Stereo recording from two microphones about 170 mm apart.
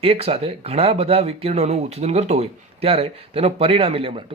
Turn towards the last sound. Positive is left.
turn(degrees=-35)  # may be behind; listen again after turning